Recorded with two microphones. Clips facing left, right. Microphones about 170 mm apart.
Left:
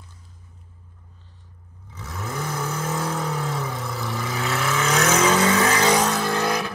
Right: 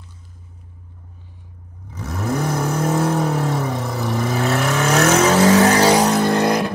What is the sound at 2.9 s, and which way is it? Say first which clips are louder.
Vehicle: right 9 dB; 65° right (ahead or behind).